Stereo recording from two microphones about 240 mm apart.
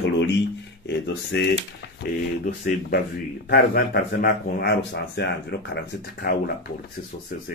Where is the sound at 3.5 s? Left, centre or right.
Left.